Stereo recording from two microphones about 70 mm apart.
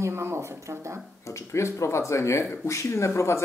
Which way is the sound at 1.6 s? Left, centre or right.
Left.